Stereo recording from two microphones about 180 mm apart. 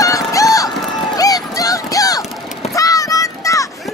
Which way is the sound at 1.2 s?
20° left (ahead or behind).